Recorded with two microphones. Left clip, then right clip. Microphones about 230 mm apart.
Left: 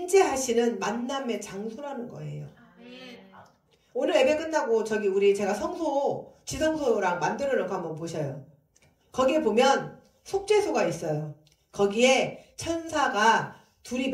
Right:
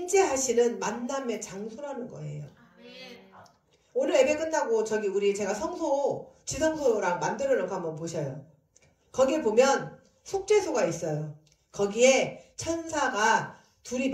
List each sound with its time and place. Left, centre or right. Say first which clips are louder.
0.0 s a woman's voice: left 2 dB; left
4.0 s a woman's voice: left 1 dB; left